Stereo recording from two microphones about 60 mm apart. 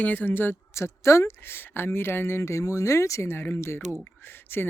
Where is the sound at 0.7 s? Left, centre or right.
Left.